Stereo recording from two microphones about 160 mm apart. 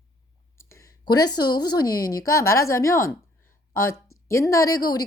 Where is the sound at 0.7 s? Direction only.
20° left (ahead or behind).